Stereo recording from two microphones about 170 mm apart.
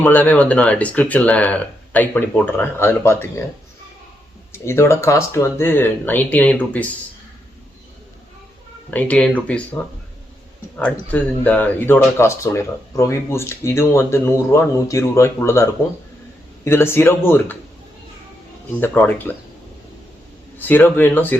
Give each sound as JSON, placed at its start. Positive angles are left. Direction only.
{"t": 0.0, "sound": "speech", "side_deg": 10}
{"t": 4.5, "sound": "speech", "side_deg": 15}
{"t": 8.9, "sound": "speech", "side_deg": 10}
{"t": 11.1, "sound": "speech", "side_deg": 10}
{"t": 18.8, "sound": "speech", "side_deg": 10}
{"t": 20.6, "sound": "speech", "side_deg": 10}